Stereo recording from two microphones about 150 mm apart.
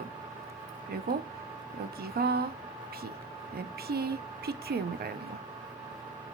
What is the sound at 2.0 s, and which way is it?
Speech, 90° right.